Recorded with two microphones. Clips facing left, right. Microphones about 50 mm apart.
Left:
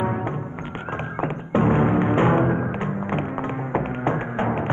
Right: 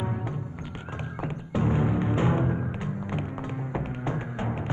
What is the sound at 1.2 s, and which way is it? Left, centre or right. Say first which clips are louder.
Music: left 8 dB; left.